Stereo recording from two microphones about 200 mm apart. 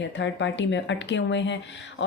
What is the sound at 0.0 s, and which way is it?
A woman's voice, 65° left (ahead or behind).